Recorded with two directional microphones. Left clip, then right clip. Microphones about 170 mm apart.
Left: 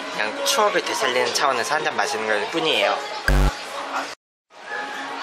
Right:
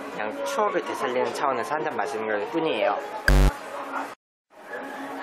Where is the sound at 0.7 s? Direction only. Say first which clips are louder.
Left 5 dB; 10° left (ahead or behind).